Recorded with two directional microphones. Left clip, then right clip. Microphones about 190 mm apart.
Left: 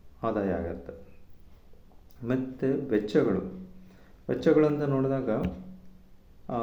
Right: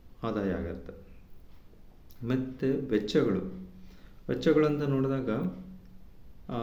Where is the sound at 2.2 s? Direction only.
35° right (ahead or behind).